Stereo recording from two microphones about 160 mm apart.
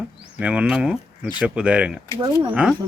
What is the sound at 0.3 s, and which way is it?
Speech, 10° right (ahead or behind).